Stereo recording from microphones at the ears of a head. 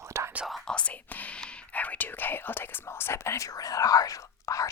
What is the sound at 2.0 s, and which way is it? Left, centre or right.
Speech, left.